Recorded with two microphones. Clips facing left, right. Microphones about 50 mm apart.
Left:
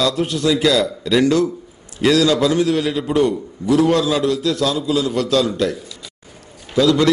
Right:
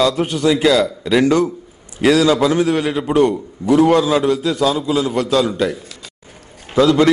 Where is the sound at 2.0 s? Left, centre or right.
Centre.